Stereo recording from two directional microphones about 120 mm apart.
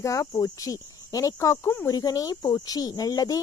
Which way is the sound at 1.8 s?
30° left (ahead or behind).